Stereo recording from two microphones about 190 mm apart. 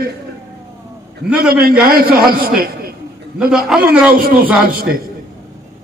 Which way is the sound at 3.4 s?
5° right (ahead or behind).